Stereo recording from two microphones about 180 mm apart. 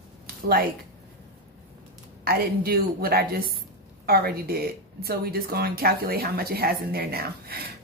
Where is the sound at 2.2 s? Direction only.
60° right (ahead or behind).